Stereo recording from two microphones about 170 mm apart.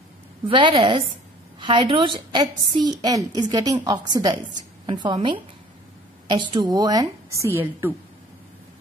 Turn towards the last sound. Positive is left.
turn(degrees=-15)  # may be behind; listen again after turning